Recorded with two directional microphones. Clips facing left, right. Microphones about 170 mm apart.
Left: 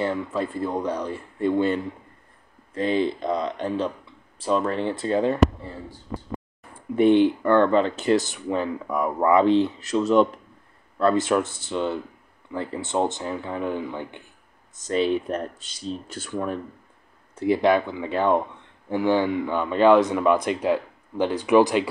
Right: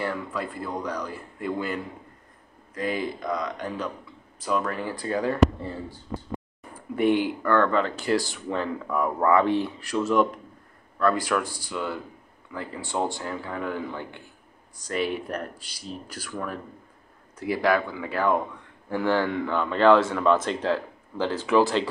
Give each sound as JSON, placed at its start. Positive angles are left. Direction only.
{"t": 0.0, "sound": "speech", "side_deg": 25}
{"t": 7.0, "sound": "speech", "side_deg": 25}